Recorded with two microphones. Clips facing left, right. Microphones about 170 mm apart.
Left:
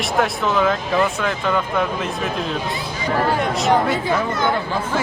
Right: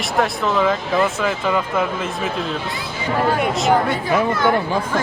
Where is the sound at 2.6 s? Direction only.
20° left (ahead or behind).